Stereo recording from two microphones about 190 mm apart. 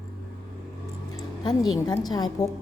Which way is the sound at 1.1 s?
20° left (ahead or behind).